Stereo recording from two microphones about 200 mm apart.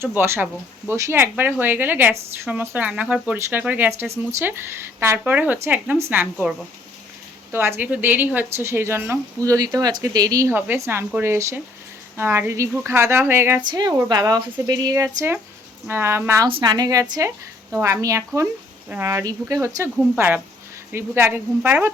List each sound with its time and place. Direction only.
0.0 s speech: 10° right (ahead or behind)
7.5 s speech: 10° right (ahead or behind)
16.5 s speech: 25° right (ahead or behind)